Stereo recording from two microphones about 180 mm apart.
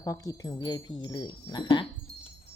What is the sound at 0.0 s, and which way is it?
Speech, 20° left (ahead or behind).